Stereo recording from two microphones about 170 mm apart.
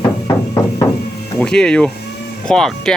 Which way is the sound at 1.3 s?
5° left (ahead or behind).